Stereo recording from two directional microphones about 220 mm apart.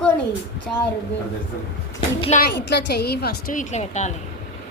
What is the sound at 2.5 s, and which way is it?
A woman's voice, 50° left (ahead or behind).